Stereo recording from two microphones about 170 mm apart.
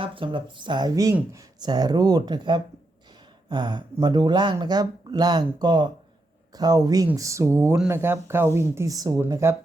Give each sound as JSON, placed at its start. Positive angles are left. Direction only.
{"t": 0.0, "sound": "speech", "side_deg": -30}